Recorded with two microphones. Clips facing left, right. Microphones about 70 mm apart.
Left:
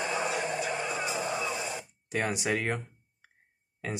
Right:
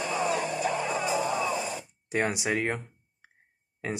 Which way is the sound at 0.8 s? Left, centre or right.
Right.